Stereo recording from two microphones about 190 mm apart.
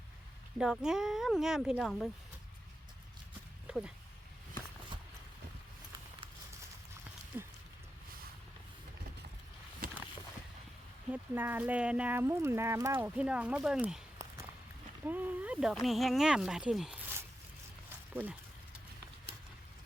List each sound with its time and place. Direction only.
0.6 s speech: 5° right (ahead or behind)
3.7 s speech: 5° right (ahead or behind)
7.3 s speech: 15° right (ahead or behind)
9.8 s a sound: 50° right (ahead or behind)
11.1 s speech: 10° right (ahead or behind)
15.0 s speech: 10° right (ahead or behind)